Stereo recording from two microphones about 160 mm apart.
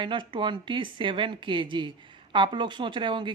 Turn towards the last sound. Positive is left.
turn(degrees=-30)  # may be behind; listen again after turning